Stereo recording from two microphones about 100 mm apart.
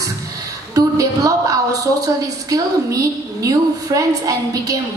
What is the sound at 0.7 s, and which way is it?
Speech, 35° right (ahead or behind).